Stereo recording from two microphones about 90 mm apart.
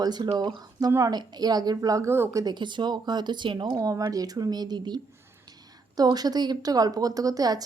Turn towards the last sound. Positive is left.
turn(degrees=-45)  # may be behind; listen again after turning